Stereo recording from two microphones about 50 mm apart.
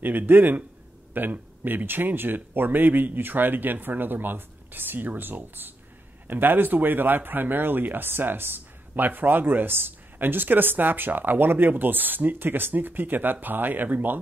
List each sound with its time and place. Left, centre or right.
0.0 s a man's voice: right